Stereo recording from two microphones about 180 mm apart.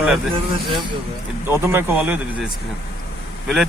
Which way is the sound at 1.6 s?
15° right (ahead or behind).